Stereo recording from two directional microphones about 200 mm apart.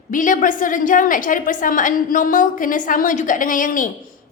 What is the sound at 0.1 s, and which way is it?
A woman's voice, 40° left (ahead or behind).